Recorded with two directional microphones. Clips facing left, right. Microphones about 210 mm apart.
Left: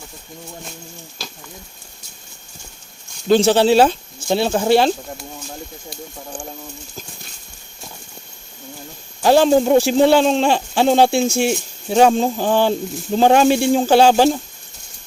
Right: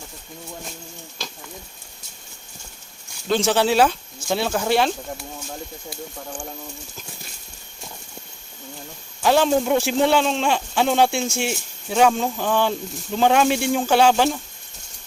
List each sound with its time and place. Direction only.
3.2 s speech: 35° left (ahead or behind)
9.2 s speech: 35° left (ahead or behind)